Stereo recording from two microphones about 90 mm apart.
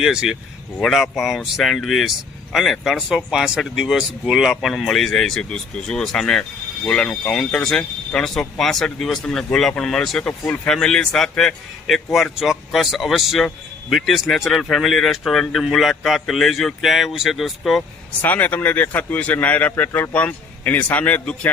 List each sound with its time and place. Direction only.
0.0 s speech: 5° right (ahead or behind)
10.4 s speech: 20° left (ahead or behind)
10.7 s speech: 5° left (ahead or behind)
18.2 s speech: 20° left (ahead or behind)